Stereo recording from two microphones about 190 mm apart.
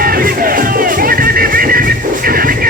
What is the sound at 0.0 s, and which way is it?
Music, 50° right (ahead or behind).